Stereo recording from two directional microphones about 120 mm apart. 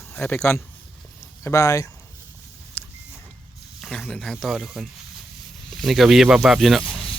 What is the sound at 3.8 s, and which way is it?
Speech, centre (ahead or behind).